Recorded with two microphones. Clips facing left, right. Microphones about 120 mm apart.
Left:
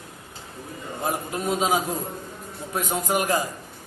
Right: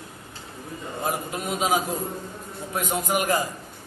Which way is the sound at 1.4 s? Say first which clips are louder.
Left 1 dB; 30° left (ahead or behind).